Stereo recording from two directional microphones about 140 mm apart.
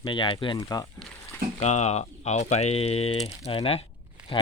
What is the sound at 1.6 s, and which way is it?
Speech, 55° left (ahead or behind).